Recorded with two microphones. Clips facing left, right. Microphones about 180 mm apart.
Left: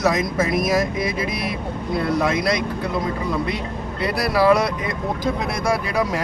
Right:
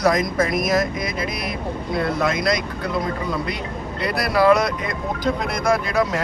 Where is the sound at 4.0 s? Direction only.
30° left (ahead or behind).